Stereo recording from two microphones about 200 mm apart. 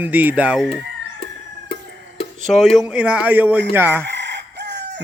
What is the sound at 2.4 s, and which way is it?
A man's voice, centre (ahead or behind).